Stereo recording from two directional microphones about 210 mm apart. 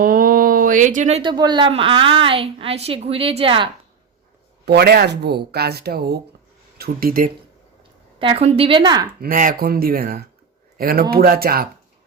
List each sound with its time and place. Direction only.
0.0 s speech: 45° right (ahead or behind); by 3.7 s 25° right (ahead or behind)
4.6 s speech: 50° right (ahead or behind)
8.2 s speech: 25° right (ahead or behind)
9.2 s a man's voice: 40° right (ahead or behind)